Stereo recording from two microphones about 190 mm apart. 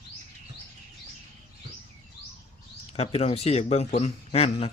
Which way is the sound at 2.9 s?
35° left (ahead or behind).